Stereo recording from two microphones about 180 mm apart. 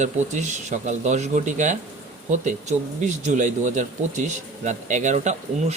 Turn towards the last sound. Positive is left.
turn(degrees=-40)  # may be behind; listen again after turning